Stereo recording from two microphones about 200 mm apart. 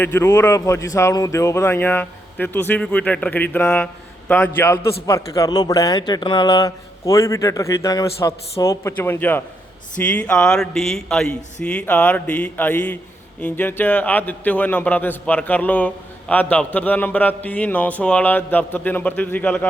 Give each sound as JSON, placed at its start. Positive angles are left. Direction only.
{"t": 0.0, "sound": "a man's voice", "side_deg": 15}